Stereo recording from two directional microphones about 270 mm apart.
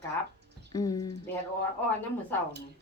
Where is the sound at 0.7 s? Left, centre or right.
Centre.